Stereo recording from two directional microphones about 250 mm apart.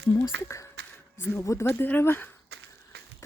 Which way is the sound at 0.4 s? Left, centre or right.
Centre.